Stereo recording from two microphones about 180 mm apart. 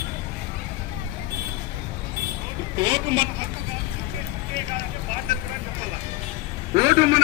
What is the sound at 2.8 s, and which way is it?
Speech, 25° right (ahead or behind).